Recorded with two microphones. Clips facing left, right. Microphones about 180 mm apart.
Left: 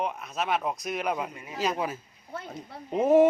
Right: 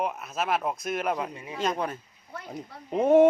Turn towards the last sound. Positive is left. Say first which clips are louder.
# right 1 dB
turn(degrees=0)  # may be behind; listen again after turning